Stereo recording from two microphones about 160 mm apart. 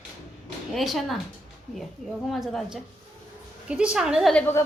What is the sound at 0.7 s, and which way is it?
Speech, centre (ahead or behind).